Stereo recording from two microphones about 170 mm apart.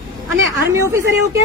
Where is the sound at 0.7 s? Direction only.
15° right (ahead or behind).